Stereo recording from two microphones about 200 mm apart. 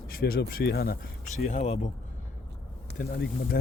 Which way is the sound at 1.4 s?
35° left (ahead or behind).